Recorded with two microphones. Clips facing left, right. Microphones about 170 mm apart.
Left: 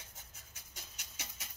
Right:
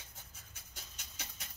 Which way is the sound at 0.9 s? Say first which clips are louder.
Right 1 dB; 10° left (ahead or behind).